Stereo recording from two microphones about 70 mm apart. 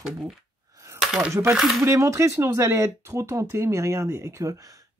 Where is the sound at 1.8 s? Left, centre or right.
Right.